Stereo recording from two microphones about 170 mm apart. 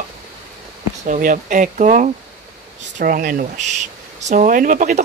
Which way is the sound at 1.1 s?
50° right (ahead or behind).